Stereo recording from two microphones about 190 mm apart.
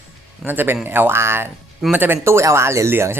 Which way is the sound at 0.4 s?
10° right (ahead or behind).